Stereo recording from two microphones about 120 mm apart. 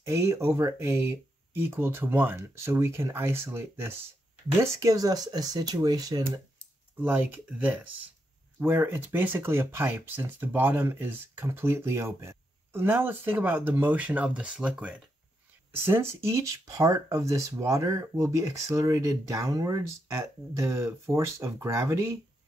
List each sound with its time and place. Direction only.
0.0 s speech: 25° right (ahead or behind)
7.0 s speech: 15° right (ahead or behind)